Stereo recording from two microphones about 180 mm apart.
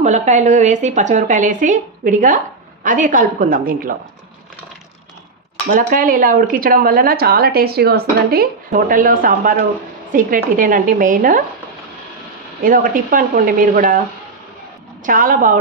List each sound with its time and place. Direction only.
0.0 s speech: 40° right (ahead or behind)
5.7 s speech: 55° right (ahead or behind)
12.6 s speech: 50° right (ahead or behind)
15.0 s speech: 50° right (ahead or behind)